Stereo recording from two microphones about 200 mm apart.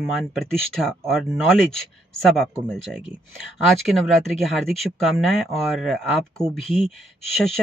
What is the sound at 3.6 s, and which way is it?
Speech, centre (ahead or behind).